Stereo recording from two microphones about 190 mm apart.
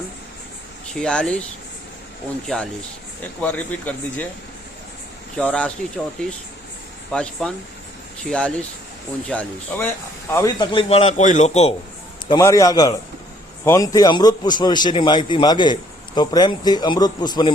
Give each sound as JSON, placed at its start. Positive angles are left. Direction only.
{"t": 0.9, "sound": "speech", "side_deg": 5}
{"t": 2.5, "sound": "speech", "side_deg": 5}
{"t": 5.4, "sound": "speech", "side_deg": 5}
{"t": 7.1, "sound": "a man's voice", "side_deg": 5}
{"t": 12.3, "sound": "a man's voice", "side_deg": 15}